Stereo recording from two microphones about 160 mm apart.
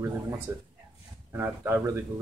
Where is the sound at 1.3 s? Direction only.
15° right (ahead or behind).